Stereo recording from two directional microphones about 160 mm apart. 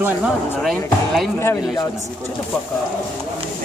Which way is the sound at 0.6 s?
Centre (ahead or behind).